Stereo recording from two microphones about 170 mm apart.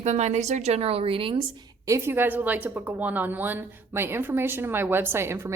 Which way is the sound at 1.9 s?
15° right (ahead or behind).